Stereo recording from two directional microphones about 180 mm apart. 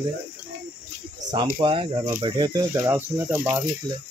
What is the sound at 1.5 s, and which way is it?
Speech, 30° right (ahead or behind).